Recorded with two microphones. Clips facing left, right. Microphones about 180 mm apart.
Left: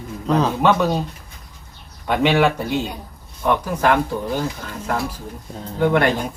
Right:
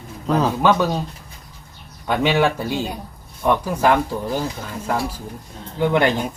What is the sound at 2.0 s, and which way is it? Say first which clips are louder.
Speech: left 1 dB; centre (ahead or behind).